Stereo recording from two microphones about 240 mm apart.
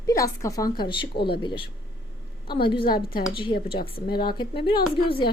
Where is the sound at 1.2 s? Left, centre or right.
Left.